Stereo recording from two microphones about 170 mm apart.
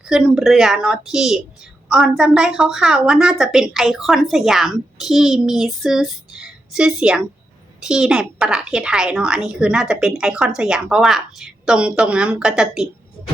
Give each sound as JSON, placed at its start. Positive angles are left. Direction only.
{"t": 0.1, "sound": "a woman's voice", "side_deg": -5}